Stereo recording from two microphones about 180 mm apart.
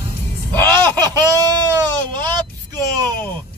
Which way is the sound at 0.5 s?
25° right (ahead or behind).